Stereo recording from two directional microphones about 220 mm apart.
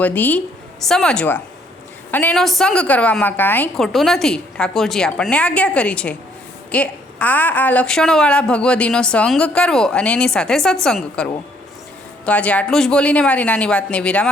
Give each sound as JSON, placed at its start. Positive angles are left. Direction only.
{"t": 0.0, "sound": "a woman's voice", "side_deg": 10}